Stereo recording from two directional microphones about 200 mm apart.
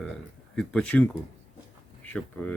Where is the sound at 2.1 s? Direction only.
5° left (ahead or behind).